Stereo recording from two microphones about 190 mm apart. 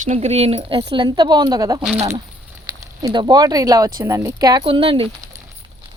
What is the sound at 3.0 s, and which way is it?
Speech, 20° right (ahead or behind).